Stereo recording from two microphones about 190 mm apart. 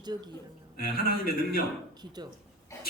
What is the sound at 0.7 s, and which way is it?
Speech, 55° left (ahead or behind).